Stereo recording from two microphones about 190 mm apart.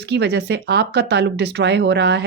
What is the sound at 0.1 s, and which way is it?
Speech, 60° right (ahead or behind).